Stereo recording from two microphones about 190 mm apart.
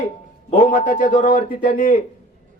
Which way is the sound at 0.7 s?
45° left (ahead or behind).